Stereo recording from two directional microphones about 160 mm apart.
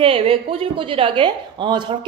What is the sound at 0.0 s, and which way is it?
A woman's voice, 35° right (ahead or behind).